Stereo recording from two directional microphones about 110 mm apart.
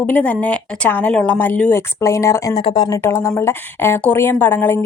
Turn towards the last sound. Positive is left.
turn(degrees=20)  # may be behind; listen again after turning